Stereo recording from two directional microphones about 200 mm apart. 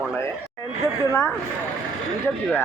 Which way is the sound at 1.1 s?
10° left (ahead or behind).